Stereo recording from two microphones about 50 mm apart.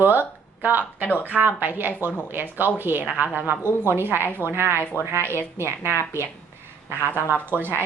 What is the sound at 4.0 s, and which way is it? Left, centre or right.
A woman's voice, right.